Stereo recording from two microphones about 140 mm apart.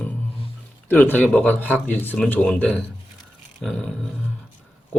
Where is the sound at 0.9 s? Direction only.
10° left (ahead or behind).